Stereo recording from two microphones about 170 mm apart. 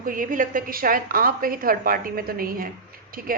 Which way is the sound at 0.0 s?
55° right (ahead or behind).